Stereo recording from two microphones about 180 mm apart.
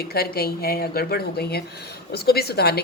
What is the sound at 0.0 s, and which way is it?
A woman's voice, 60° left (ahead or behind).